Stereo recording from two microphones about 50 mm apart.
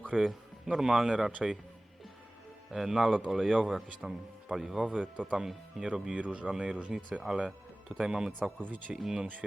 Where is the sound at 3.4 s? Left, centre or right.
Right.